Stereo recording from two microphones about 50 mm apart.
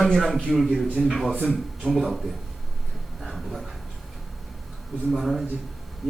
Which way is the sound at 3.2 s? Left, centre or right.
Centre.